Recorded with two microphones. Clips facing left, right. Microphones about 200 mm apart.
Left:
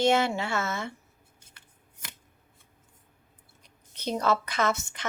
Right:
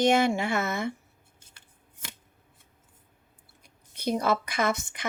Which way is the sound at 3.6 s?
10° right (ahead or behind).